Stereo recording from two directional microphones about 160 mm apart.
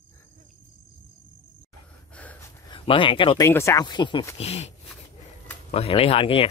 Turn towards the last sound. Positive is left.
turn(degrees=35)  # may be behind; listen again after turning